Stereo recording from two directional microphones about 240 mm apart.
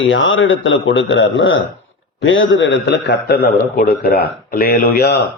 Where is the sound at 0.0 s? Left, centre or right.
Left.